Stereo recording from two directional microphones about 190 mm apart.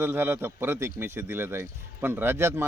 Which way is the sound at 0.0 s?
10° right (ahead or behind).